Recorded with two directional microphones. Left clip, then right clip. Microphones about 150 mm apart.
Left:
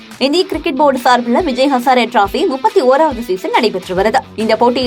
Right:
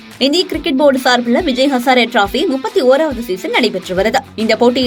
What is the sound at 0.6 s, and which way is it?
A woman's voice, 15° right (ahead or behind).